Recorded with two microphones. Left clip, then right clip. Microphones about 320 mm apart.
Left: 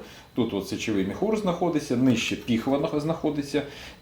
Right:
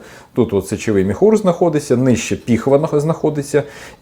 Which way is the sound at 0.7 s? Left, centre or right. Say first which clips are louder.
Right 11 dB; right.